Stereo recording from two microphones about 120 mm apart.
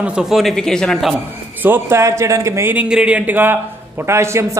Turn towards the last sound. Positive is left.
turn(degrees=-20)  # may be behind; listen again after turning